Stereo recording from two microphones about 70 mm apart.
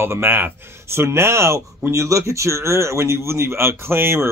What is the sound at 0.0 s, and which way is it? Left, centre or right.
Speech, right.